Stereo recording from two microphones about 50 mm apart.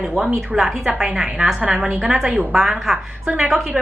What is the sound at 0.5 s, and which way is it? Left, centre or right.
A woman's voice, centre.